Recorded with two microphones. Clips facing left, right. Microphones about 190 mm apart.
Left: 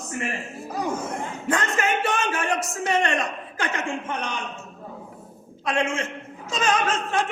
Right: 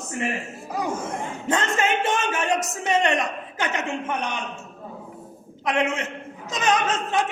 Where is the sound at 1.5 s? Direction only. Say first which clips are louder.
Right 1 dB; 20° right (ahead or behind).